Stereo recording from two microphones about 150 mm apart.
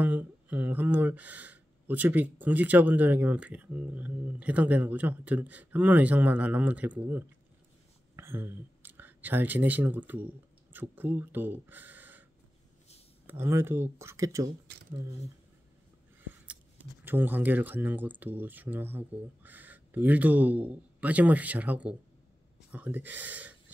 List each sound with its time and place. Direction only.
0.0 s speech: 10° right (ahead or behind)
13.3 s speech: 15° right (ahead or behind)
17.0 s speech: 15° right (ahead or behind)